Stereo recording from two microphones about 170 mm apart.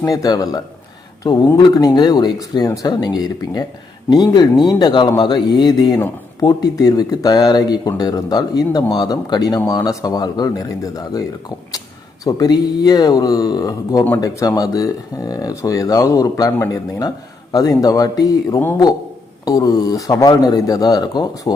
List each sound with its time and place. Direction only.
0.0 s speech: 20° left (ahead or behind)